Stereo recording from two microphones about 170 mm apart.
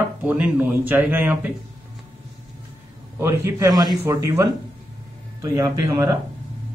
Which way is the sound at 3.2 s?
15° right (ahead or behind).